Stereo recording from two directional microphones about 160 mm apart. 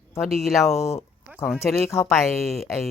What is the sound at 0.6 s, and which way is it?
Speech, 20° left (ahead or behind).